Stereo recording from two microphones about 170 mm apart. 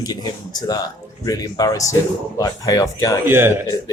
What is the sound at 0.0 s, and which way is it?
Speech, 25° left (ahead or behind).